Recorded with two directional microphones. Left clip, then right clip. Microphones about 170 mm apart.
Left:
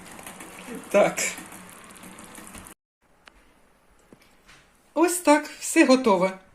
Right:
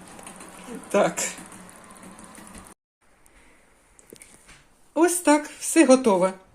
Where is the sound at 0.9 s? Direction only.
10° right (ahead or behind).